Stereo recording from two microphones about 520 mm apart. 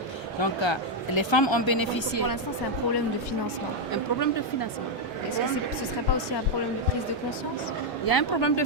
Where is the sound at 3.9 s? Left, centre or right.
Left.